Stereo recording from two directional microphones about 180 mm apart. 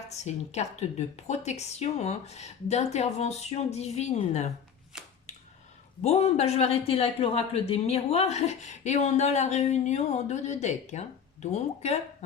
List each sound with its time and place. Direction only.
0.1 s a man's voice: 40° left (ahead or behind)
4.9 s a sound: 5° right (ahead or behind)
6.0 s a man's voice: 35° left (ahead or behind)